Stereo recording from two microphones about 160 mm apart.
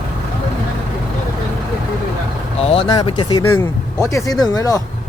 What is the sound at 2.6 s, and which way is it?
Speech, 40° left (ahead or behind).